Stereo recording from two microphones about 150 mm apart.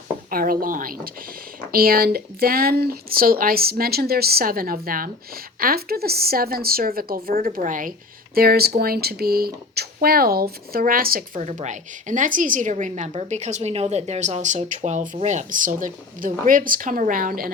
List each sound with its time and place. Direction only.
0.3 s speech: 75° right (ahead or behind)
1.7 s speech: 85° right; by 7.9 s 60° right (ahead or behind)
8.4 s speech: 90° right; by 11.4 s 70° right (ahead or behind)
11.4 s a woman's voice: 55° right (ahead or behind); by 17.5 s 70° right (ahead or behind)